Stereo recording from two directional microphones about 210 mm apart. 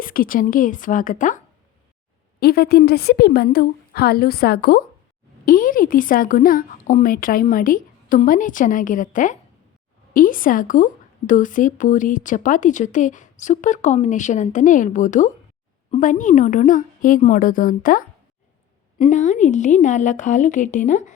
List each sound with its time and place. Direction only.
0.0 s speech: 40° left (ahead or behind)
2.4 s a woman's voice: 50° left (ahead or behind)